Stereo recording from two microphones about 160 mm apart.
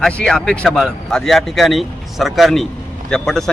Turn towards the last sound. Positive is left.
turn(degrees=5)  # may be behind; listen again after turning